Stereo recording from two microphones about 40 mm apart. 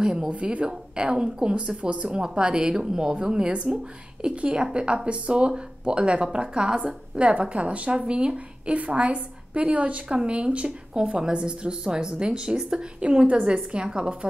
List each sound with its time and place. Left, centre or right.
0.0 s a woman's voice: centre
0.3 s a woman's voice: right
8.7 s a woman's voice: right
11.1 s speech: right